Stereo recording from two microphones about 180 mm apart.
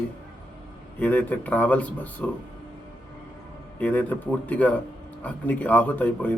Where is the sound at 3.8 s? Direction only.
10° left (ahead or behind).